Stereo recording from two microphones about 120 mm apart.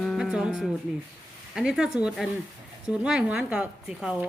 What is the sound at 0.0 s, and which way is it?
Music, centre (ahead or behind).